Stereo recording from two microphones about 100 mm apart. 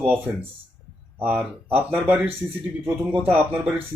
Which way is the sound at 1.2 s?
15° right (ahead or behind).